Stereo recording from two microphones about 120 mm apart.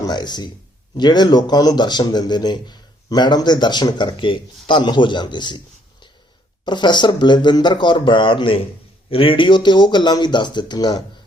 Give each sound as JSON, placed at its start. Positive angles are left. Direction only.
{"t": 0.0, "sound": "speech", "side_deg": 35}